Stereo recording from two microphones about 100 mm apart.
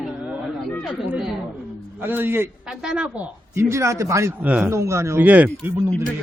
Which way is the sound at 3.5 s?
30° right (ahead or behind).